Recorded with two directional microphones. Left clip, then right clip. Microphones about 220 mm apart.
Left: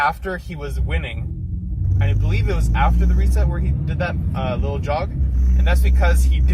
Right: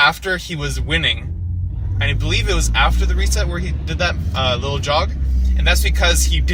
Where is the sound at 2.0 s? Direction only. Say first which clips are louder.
Right 9 dB; 40° right (ahead or behind).